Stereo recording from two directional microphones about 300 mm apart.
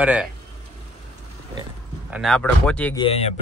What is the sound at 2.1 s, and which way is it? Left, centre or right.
Speech, centre.